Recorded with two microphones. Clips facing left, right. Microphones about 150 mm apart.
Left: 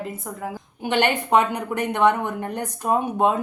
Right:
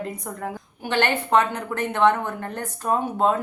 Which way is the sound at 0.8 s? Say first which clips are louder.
Left 2 dB; 15° left (ahead or behind).